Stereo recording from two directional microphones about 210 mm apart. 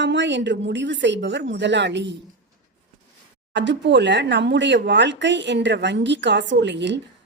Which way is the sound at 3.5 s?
55° right (ahead or behind).